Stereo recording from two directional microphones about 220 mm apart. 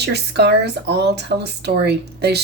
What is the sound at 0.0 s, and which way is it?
Speech, 50° right (ahead or behind).